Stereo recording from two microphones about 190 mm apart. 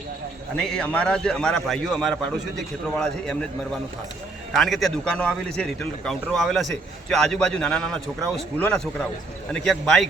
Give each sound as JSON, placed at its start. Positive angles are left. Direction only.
{"t": 0.5, "sound": "a man's voice", "side_deg": 5}
{"t": 4.5, "sound": "a man's voice", "side_deg": 0}